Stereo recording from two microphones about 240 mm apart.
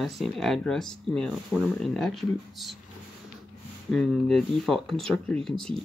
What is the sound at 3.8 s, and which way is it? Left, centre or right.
Speech, centre.